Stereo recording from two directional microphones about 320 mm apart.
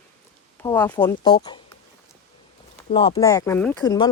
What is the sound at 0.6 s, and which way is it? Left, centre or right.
Speech, centre.